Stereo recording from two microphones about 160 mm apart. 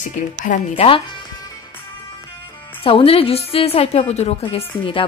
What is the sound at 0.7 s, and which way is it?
Speech, 35° left (ahead or behind).